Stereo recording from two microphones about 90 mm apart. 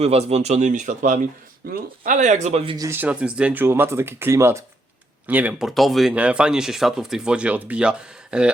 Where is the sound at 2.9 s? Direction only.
15° right (ahead or behind); by 4.6 s 35° right (ahead or behind).